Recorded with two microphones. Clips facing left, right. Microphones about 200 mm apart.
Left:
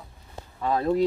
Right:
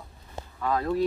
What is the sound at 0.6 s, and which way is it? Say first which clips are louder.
Speech: left 3 dB; 25° left (ahead or behind).